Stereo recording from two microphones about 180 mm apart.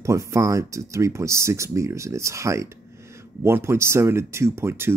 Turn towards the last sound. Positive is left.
turn(degrees=-15)  # may be behind; listen again after turning